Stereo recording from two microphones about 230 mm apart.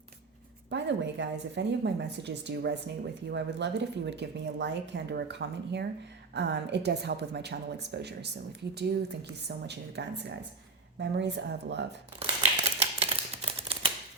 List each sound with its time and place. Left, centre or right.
0.7 s speech: right
12.2 s typewriter: right